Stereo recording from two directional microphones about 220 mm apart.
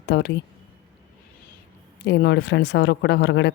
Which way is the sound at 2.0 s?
50° left (ahead or behind).